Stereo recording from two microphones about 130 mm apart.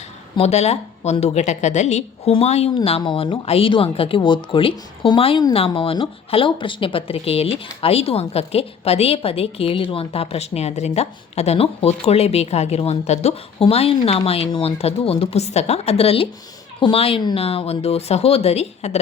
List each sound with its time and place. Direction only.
0.3 s a woman's voice: 55° left (ahead or behind)
3.0 s a woman's voice: 40° left (ahead or behind); by 18.9 s 55° left (ahead or behind)